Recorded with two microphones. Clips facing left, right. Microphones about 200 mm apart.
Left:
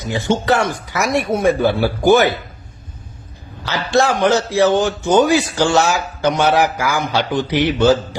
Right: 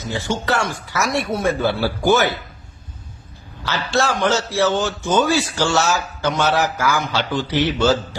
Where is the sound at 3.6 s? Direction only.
15° left (ahead or behind).